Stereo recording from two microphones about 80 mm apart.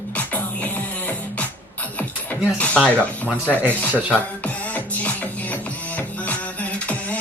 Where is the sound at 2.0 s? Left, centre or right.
Centre.